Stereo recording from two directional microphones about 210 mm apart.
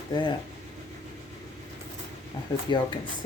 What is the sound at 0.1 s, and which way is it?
Speech, 20° left (ahead or behind).